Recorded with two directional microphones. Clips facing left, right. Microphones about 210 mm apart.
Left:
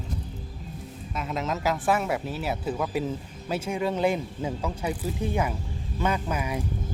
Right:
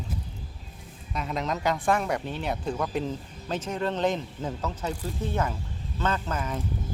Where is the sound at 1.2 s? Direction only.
Centre (ahead or behind).